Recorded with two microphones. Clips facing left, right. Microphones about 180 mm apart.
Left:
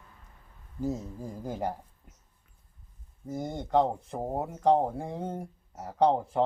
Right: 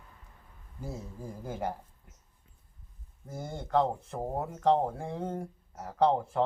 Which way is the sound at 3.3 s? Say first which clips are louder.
Left 3 dB; 15° left (ahead or behind).